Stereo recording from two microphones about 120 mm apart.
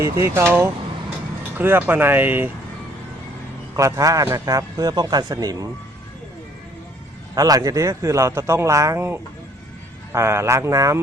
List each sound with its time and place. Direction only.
0.0 s a man's voice: 20° right (ahead or behind)
3.8 s a man's voice: 25° right (ahead or behind)
7.3 s a man's voice: 30° right (ahead or behind)